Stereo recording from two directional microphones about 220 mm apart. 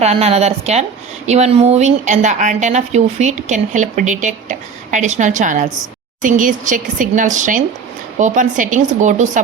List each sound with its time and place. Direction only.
0.0 s a woman's voice: 30° right (ahead or behind)